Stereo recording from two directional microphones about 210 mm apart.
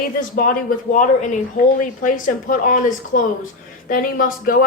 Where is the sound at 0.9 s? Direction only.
35° left (ahead or behind).